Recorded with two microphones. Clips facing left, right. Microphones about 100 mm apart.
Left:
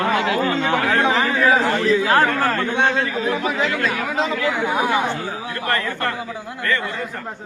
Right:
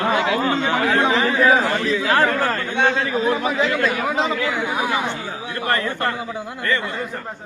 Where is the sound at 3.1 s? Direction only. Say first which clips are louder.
Right 3 dB; 25° right (ahead or behind).